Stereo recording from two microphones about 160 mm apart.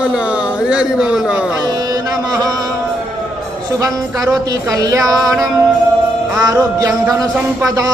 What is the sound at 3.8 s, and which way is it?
Music, 20° right (ahead or behind).